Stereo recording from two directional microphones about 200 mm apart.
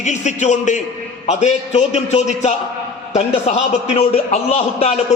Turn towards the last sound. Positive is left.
turn(degrees=35)  # may be behind; listen again after turning